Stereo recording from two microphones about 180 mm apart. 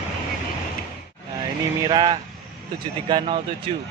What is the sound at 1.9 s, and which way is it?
Speech, 25° right (ahead or behind).